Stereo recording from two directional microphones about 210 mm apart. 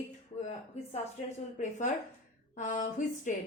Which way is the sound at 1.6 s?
35° left (ahead or behind).